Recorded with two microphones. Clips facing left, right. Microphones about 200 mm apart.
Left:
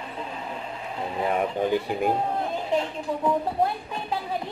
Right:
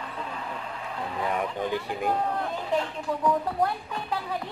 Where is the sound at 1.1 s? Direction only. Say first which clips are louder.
Left 4 dB; 25° left (ahead or behind).